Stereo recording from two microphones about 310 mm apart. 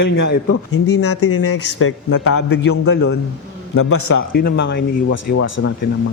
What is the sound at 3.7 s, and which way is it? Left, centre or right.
Speech, left.